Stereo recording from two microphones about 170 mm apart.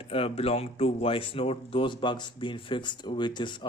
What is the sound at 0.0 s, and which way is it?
Speech, 35° left (ahead or behind).